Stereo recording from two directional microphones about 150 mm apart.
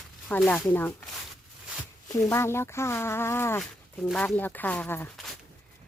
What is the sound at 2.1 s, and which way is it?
Speech, 15° left (ahead or behind).